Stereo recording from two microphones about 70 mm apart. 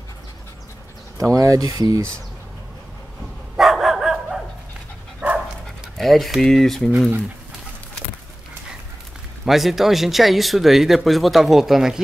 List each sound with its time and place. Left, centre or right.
1.1 s speech: right
3.5 s dog: centre
5.2 s dog: right
5.9 s speech: centre
9.4 s speech: centre